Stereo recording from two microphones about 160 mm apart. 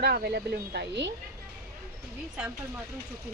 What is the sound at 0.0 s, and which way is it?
Speech, 80° right.